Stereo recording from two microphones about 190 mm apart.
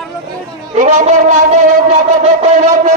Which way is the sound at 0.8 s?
40° right (ahead or behind).